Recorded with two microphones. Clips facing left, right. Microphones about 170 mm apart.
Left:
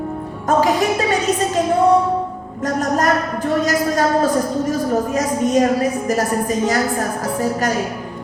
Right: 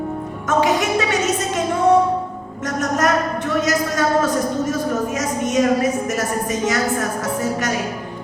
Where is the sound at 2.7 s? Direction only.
35° left (ahead or behind).